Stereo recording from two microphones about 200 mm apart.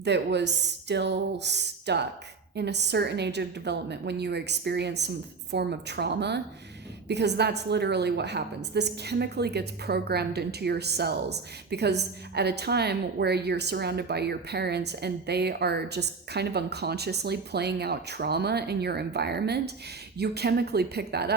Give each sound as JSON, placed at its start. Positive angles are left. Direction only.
{"t": 0.0, "sound": "a woman's voice", "side_deg": -60}